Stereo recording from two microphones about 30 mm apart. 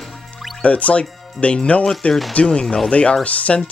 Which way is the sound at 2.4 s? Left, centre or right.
Left.